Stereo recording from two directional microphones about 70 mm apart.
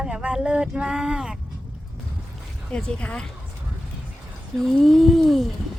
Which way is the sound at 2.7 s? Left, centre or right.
Centre.